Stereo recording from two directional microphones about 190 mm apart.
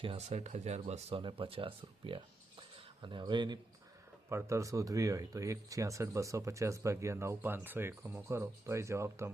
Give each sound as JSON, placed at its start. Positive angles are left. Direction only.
{"t": 0.0, "sound": "speech", "side_deg": -30}